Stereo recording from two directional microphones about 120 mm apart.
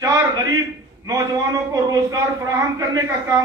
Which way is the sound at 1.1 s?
30° right (ahead or behind).